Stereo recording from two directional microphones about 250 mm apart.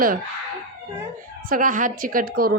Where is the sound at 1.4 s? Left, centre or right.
Right.